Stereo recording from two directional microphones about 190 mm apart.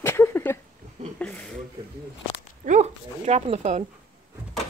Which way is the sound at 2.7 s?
35° right (ahead or behind).